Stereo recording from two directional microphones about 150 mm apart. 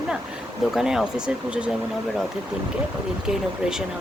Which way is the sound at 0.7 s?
5° right (ahead or behind).